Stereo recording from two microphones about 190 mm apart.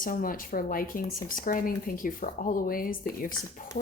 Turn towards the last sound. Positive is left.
turn(degrees=50)  # may be behind; listen again after turning